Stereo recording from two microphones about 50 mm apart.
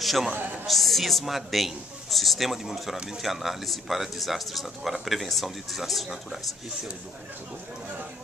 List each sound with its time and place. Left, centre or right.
0.0 s a man's voice: centre
0.3 s a sound: right
0.7 s a woman's voice: centre